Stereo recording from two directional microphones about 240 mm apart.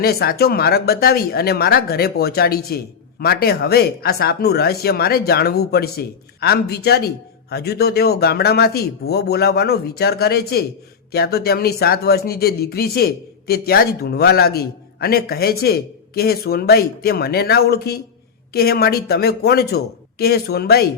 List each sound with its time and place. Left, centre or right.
0.0 s speech: left